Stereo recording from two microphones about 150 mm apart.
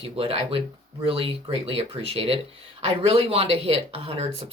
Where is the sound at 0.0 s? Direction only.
40° right (ahead or behind).